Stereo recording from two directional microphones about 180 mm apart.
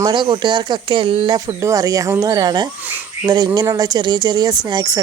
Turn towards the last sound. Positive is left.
turn(degrees=-25)  # may be behind; listen again after turning